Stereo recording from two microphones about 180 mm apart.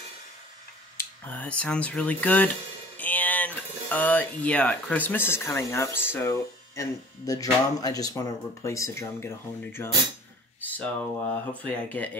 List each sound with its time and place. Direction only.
0.9 s speech: 10° left (ahead or behind)